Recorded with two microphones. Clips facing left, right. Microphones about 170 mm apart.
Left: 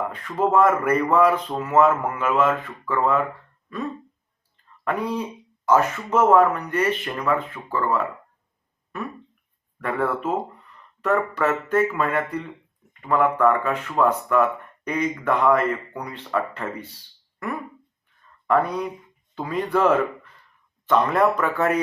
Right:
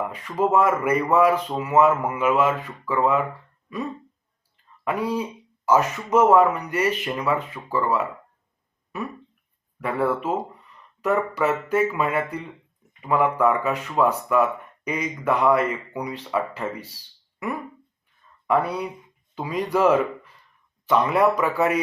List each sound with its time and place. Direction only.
0.1 s speech: 10° right (ahead or behind)
4.9 s speech: 10° right (ahead or behind)
9.8 s speech: 10° right (ahead or behind)
18.4 s speech: 10° right (ahead or behind)